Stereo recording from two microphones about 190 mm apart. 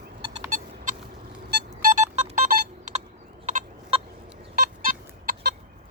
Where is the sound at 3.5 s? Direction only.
40° right (ahead or behind).